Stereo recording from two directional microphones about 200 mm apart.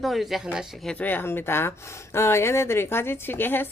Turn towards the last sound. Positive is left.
turn(degrees=10)  # may be behind; listen again after turning